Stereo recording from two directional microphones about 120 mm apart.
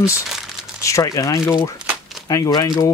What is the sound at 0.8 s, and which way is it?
Speech, 25° left (ahead or behind).